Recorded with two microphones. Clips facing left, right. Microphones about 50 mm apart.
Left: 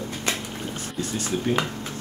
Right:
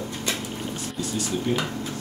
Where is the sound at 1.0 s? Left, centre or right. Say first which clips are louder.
Left 1 dB; left.